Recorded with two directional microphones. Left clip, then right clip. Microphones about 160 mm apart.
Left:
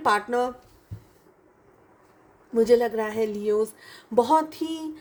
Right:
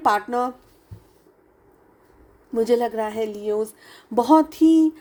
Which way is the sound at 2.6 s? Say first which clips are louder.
Even; 45° right (ahead or behind).